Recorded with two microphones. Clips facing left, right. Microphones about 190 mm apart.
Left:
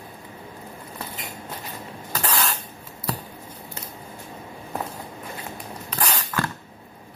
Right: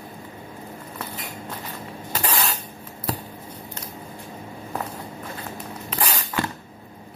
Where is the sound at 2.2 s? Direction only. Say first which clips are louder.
Even; centre (ahead or behind).